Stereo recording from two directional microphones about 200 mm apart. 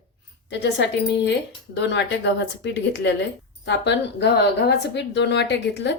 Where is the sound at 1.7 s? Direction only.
60° left (ahead or behind).